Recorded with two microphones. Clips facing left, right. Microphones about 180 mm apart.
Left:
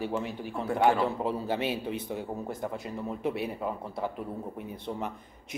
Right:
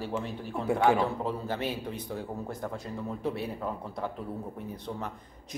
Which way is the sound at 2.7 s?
20° left (ahead or behind).